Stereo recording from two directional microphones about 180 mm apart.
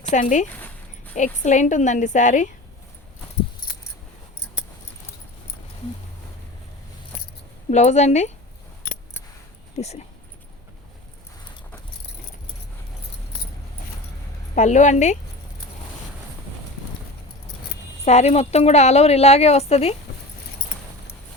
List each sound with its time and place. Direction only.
0.0 s a woman's voice: 45° left (ahead or behind)
7.7 s a woman's voice: 40° left (ahead or behind)
9.7 s a woman's voice: 40° left (ahead or behind)
14.5 s a woman's voice: 40° left (ahead or behind)
18.0 s a woman's voice: 35° left (ahead or behind)